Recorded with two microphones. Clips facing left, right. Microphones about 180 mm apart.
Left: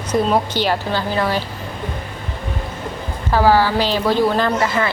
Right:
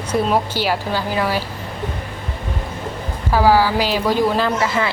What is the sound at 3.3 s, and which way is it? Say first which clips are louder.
A woman's voice: even; 10° right (ahead or behind).